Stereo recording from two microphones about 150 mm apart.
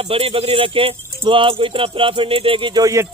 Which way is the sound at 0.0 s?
40° right (ahead or behind).